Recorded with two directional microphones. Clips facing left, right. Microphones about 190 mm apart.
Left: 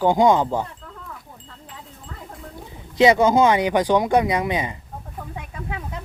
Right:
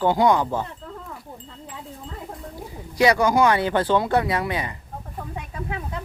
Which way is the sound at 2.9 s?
20° left (ahead or behind).